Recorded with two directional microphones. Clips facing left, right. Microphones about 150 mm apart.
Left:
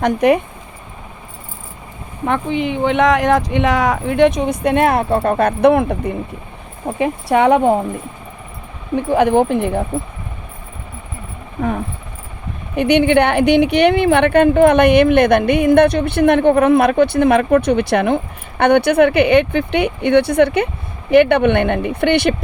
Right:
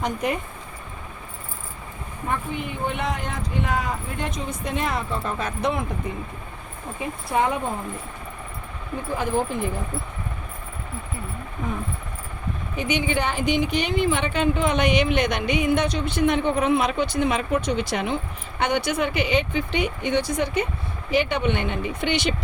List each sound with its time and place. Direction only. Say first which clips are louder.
0.0 s speech: left 12 dB; 75° left (ahead or behind)
2.2 s speech: left 10 dB; 90° left; by 6.1 s 65° left (ahead or behind)
6.8 s speech: left 12 dB; 75° left (ahead or behind)
9.0 s speech: left 11 dB; 70° left (ahead or behind)
12.7 s speech: left 12 dB; 65° left (ahead or behind)